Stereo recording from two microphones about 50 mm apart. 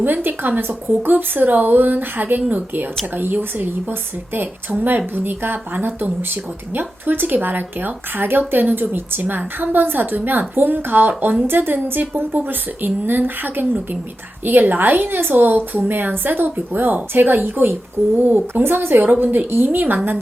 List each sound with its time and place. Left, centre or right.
0.0 s speech: right
4.9 s speech: right
18.6 s a woman's voice: right